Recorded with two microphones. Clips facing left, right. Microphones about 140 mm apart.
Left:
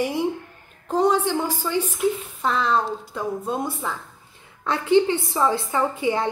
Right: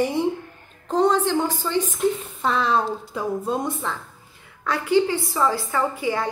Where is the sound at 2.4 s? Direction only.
Centre (ahead or behind).